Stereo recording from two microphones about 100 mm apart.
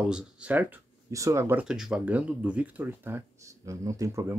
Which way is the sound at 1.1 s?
30° right (ahead or behind).